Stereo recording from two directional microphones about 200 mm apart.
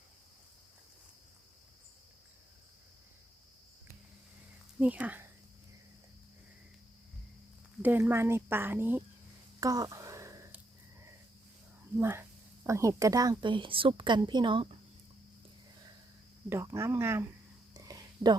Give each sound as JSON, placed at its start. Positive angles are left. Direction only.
{"t": 4.8, "sound": "speech", "side_deg": -5}
{"t": 7.8, "sound": "speech", "side_deg": -10}
{"t": 9.6, "sound": "a sound", "side_deg": -20}
{"t": 11.9, "sound": "a woman's voice", "side_deg": -10}
{"t": 16.5, "sound": "speech", "side_deg": -15}
{"t": 17.7, "sound": "a sound", "side_deg": -20}